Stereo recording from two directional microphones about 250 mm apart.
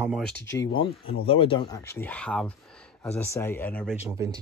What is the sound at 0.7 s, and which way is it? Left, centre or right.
Speech, left.